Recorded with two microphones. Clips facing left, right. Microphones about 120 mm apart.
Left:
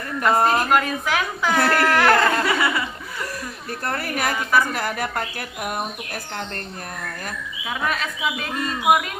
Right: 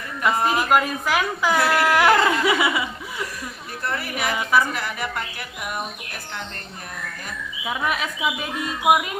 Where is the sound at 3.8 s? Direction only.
45° left (ahead or behind).